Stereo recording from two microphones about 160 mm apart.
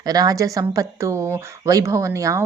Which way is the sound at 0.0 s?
25° right (ahead or behind).